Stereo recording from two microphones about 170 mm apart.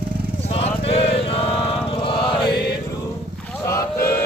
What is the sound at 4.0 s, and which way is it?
Music, 65° left (ahead or behind).